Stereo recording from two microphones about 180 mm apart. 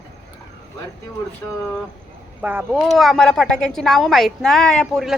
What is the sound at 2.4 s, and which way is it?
A woman's voice, 10° right (ahead or behind).